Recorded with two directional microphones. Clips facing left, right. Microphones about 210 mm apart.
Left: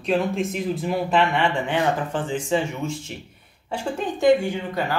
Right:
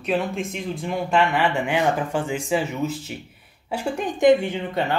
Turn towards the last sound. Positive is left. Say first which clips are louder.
# right 1 dB
turn(degrees=-20)  # may be behind; listen again after turning